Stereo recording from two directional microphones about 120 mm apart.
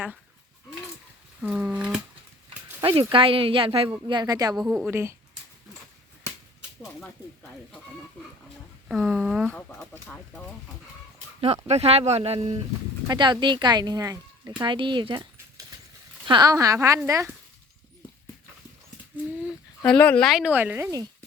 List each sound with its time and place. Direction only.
1.4 s speech: 10° right (ahead or behind)
2.8 s speech: 45° right (ahead or behind)
3.9 s speech: 35° right (ahead or behind)
4.9 s speech: 20° right (ahead or behind)
7.0 s speech: 10° left (ahead or behind)
8.9 s speech: 5° right (ahead or behind)
9.5 s speech: 10° left (ahead or behind)
11.3 s speech: 60° right (ahead or behind)
13.1 s speech: 40° right (ahead or behind)
14.6 s speech: 40° right (ahead or behind); by 17.3 s 25° right (ahead or behind)
19.8 s speech: 10° left (ahead or behind)
20.4 s speech: 10° right (ahead or behind)